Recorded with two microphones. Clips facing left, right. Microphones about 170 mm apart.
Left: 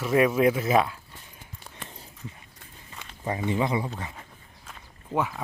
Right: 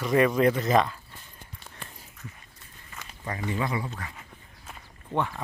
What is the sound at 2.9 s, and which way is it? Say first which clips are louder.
Speech: left 5 dB; 20° left (ahead or behind).